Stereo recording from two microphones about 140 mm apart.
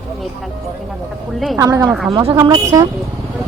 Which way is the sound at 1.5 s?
20° right (ahead or behind).